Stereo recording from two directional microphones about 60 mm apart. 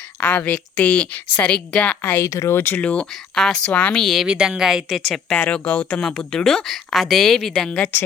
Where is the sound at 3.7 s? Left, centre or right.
Left.